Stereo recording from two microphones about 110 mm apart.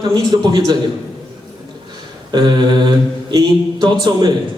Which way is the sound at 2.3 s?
40° right (ahead or behind).